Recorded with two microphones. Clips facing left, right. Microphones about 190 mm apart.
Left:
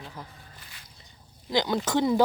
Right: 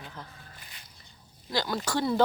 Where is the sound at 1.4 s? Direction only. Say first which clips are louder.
Left 4 dB; 20° left (ahead or behind).